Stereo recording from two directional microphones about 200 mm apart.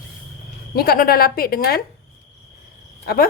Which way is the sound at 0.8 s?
50° left (ahead or behind).